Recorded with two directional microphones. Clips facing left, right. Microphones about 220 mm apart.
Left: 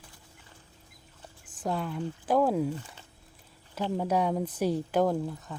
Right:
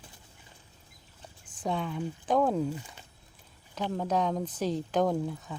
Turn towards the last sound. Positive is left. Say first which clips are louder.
# left 1 dB
turn(degrees=0)  # may be behind; listen again after turning